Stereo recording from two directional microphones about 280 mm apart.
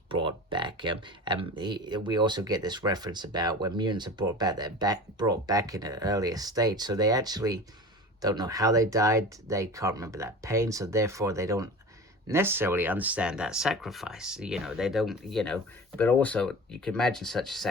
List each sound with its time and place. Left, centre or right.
0.1 s speech: centre